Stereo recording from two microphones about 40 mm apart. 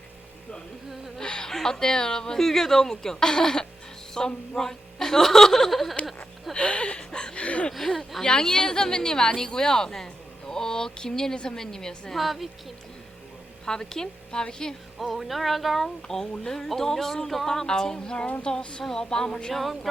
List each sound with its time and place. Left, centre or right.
1.2 s a sound: centre
1.5 s speech: centre
4.2 s a sound: centre
4.5 s speech: centre
6.5 s a sound: left
8.2 s speech: centre
12.1 s music: centre
13.7 s speech: centre
14.9 s music: centre
16.0 s speech: centre
18.4 s a sound: left
18.8 s speech: centre